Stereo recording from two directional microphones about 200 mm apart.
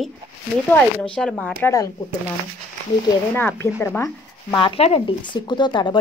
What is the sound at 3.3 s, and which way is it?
Speech, 10° left (ahead or behind).